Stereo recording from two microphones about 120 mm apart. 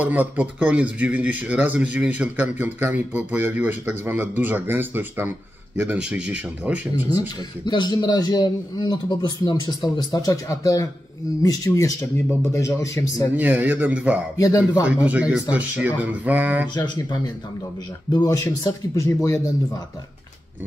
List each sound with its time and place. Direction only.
0.0 s speech: 15° right (ahead or behind)
7.2 s a man's voice: 35° left (ahead or behind)
13.4 s speech: 15° right (ahead or behind)
14.4 s a man's voice: 25° left (ahead or behind)
14.9 s speech: 10° right (ahead or behind)
16.7 s a man's voice: 40° left (ahead or behind)